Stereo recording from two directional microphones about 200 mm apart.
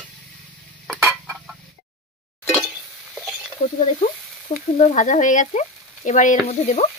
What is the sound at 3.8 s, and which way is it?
Frying, 40° left (ahead or behind).